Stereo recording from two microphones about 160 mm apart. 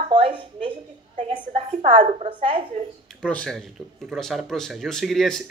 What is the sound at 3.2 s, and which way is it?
Speech, 5° left (ahead or behind).